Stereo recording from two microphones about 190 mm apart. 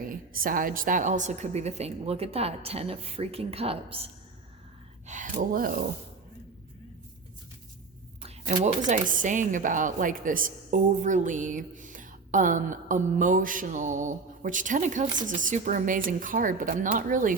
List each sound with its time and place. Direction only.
0.0 s a woman's voice: 50° right (ahead or behind); by 4.1 s 30° right (ahead or behind)
5.0 s a woman's voice: 40° right (ahead or behind)
8.9 s a woman's voice: 40° right (ahead or behind)